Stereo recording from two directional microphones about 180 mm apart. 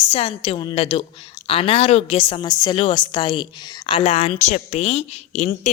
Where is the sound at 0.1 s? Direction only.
30° left (ahead or behind).